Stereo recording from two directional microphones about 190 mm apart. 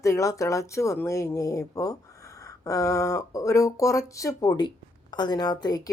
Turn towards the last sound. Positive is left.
turn(degrees=20)  # may be behind; listen again after turning